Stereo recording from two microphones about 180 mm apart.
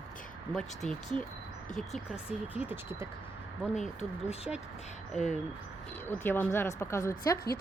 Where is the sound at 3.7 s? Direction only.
40° left (ahead or behind).